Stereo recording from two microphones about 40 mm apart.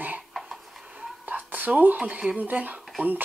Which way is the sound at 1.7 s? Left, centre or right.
Right.